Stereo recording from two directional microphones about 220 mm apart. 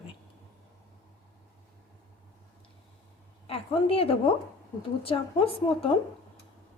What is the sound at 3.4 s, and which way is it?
A woman's voice, 25° left (ahead or behind).